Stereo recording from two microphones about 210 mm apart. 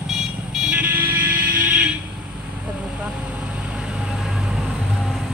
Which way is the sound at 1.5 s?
5° right (ahead or behind).